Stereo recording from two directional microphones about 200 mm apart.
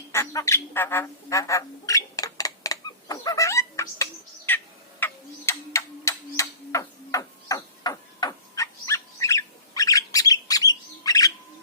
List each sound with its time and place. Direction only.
0.1 s squawk: 15° left (ahead or behind)